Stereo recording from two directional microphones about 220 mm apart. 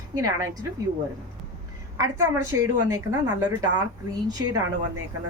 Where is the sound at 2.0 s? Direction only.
80° right.